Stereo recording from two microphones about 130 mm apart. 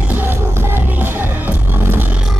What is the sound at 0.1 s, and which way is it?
Music, 15° right (ahead or behind).